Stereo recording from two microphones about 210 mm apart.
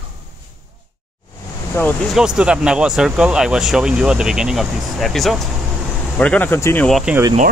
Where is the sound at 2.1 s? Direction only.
5° right (ahead or behind).